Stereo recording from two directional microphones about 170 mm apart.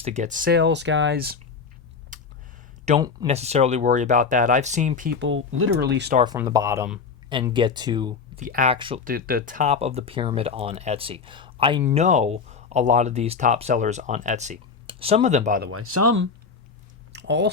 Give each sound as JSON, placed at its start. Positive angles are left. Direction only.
{"t": 0.0, "sound": "speech", "side_deg": -45}
{"t": 0.5, "sound": "speech", "side_deg": -90}
{"t": 2.1, "sound": "a sound", "side_deg": -50}
{"t": 2.9, "sound": "speech", "side_deg": -40}
{"t": 5.8, "sound": "speech", "side_deg": -80}
{"t": 6.2, "sound": "speech", "side_deg": -20}
{"t": 8.4, "sound": "speech", "side_deg": -50}
{"t": 8.7, "sound": "speech", "side_deg": -30}
{"t": 9.0, "sound": "speech", "side_deg": -60}
{"t": 9.7, "sound": "speech", "side_deg": -40}
{"t": 11.9, "sound": "speech", "side_deg": -45}
{"t": 14.8, "sound": "speech", "side_deg": -35}
{"t": 17.1, "sound": "a sound", "side_deg": -90}